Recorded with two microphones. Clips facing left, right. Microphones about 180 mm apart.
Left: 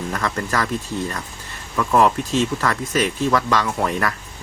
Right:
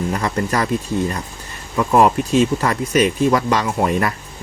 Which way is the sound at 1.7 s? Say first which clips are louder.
Right 3 dB; 20° right (ahead or behind).